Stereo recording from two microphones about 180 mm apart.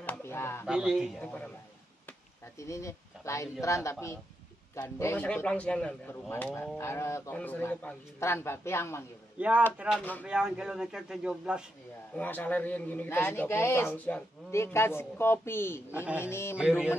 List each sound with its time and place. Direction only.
0.0 s a sound: 10° left (ahead or behind)
0.7 s a man's voice: 5° right (ahead or behind)
1.2 s a man's voice: 5° left (ahead or behind)
2.6 s a man's voice: 15° left (ahead or behind)
9.4 s speech: 10° right (ahead or behind)
9.9 s a man's voice: 10° left (ahead or behind)
10.2 s a man's voice: 5° right (ahead or behind)
12.2 s a man's voice: 10° left (ahead or behind)
15.9 s speech: 10° right (ahead or behind)
16.3 s a man's voice: 15° left (ahead or behind)